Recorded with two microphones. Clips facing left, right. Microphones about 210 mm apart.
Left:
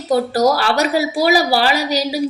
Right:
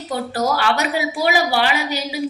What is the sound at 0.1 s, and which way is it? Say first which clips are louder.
A woman's voice: left 7 dB; 35° left (ahead or behind).